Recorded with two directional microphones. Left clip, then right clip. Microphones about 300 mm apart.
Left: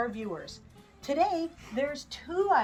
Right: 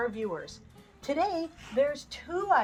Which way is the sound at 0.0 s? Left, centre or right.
Centre.